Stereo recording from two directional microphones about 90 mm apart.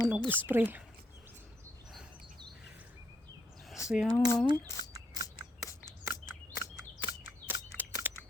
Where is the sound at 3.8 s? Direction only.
35° left (ahead or behind).